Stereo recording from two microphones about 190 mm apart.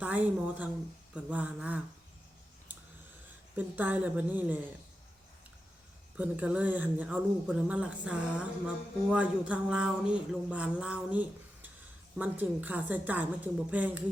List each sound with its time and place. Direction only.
0.0 s speech: 10° right (ahead or behind)
3.5 s speech: 10° right (ahead or behind)
6.1 s speech: 5° right (ahead or behind)